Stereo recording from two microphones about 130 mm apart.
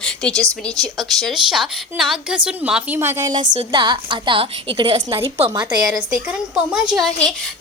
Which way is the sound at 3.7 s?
35° right (ahead or behind).